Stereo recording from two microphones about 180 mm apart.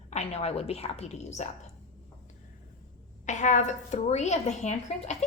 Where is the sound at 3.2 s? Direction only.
40° left (ahead or behind).